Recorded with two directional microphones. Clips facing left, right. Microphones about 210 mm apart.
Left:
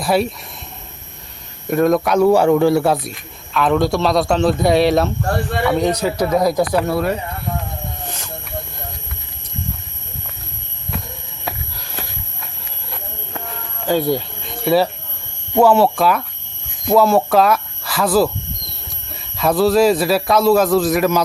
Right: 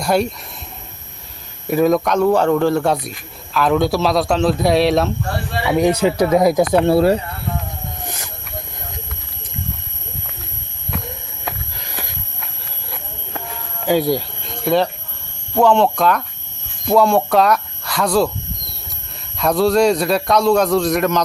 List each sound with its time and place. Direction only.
0.0 s a man's voice: centre (ahead or behind)
1.6 s speech: 5° right (ahead or behind)
2.0 s a man's voice: 10° left (ahead or behind)
5.6 s speech: 20° right (ahead or behind)
8.0 s a sound: 10° right (ahead or behind)
13.8 s speech: 10° right (ahead or behind)
14.4 s a sound: 5° left (ahead or behind)
15.5 s a man's voice: 5° left (ahead or behind)
19.4 s a man's voice: centre (ahead or behind)